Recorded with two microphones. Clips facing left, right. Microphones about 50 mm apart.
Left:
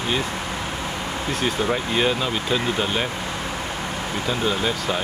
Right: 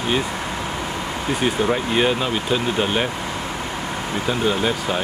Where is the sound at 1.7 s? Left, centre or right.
Centre.